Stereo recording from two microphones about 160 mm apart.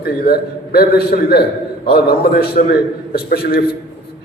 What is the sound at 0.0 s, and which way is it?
A man's voice, 75° left (ahead or behind).